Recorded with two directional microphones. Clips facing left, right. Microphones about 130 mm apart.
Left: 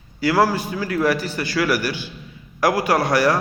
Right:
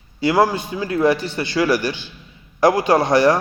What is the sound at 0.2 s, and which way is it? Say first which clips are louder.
A man's voice: right 1 dB; 20° right (ahead or behind).